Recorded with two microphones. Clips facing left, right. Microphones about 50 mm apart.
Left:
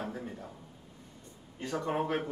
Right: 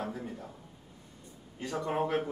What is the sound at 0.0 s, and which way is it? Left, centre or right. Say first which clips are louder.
Speech: right 1 dB; centre.